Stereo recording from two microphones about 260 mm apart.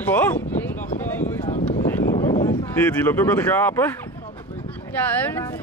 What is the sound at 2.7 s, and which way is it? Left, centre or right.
Speech, centre.